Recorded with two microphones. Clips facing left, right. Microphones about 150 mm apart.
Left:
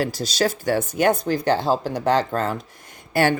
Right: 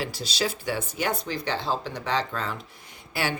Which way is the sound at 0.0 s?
40° left (ahead or behind).